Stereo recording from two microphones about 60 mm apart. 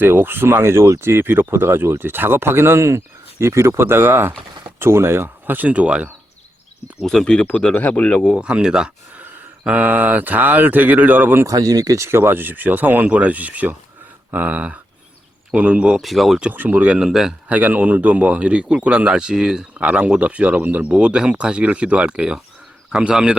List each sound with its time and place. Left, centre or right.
0.0 s speech: right
7.0 s speech: centre
7.5 s speech: left
8.4 s speech: centre
9.6 s speech: right
11.4 s speech: right
12.0 s speech: right; by 16.0 s centre
16.0 s speech: centre
16.5 s speech: right
17.1 s speech: centre
17.5 s speech: right